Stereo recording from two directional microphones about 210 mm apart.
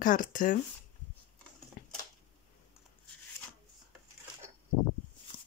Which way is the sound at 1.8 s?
40° left (ahead or behind).